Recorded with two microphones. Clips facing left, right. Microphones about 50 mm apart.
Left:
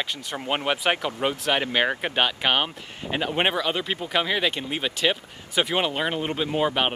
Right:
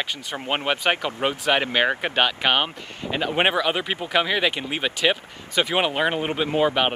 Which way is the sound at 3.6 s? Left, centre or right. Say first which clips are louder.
Right 2 dB; centre.